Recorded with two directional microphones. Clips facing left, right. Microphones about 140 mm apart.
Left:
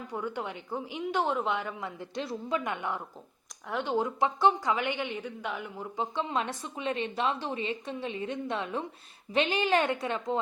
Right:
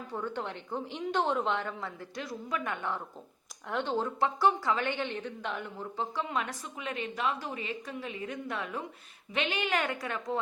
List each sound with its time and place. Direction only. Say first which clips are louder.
0.1 s a woman's voice: left 1 dB; 10° left (ahead or behind)
6.1 s a woman's voice: left 4 dB; 25° left (ahead or behind)